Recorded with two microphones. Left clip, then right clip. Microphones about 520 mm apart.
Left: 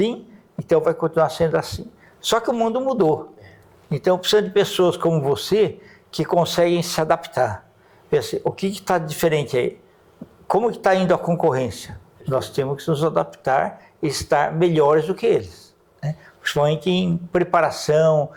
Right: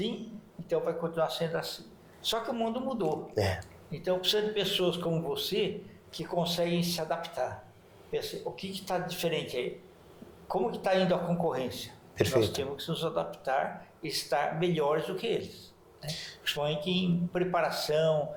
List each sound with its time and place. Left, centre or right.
0.7 s speech: left
3.3 s speech: right
3.9 s speech: left
8.7 s speech: left